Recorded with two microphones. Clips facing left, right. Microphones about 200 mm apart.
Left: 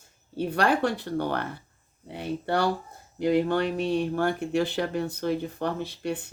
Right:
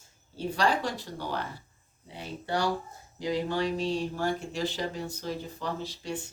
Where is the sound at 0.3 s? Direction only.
60° left (ahead or behind).